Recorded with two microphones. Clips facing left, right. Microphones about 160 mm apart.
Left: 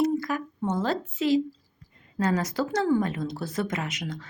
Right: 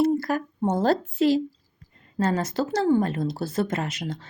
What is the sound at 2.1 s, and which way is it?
Speech, 30° right (ahead or behind).